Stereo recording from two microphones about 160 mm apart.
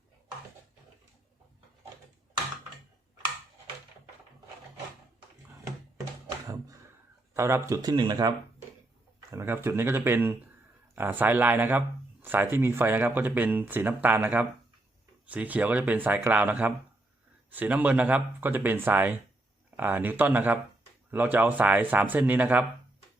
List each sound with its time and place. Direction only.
7.3 s speech: 15° right (ahead or behind)
9.3 s speech: 15° right (ahead or behind)